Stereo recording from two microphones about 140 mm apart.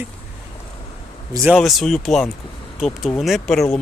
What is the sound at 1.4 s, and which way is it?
Speech, centre (ahead or behind).